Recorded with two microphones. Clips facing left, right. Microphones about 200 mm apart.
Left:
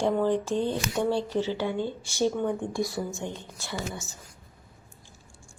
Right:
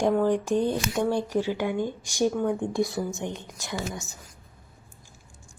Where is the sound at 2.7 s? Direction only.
20° right (ahead or behind).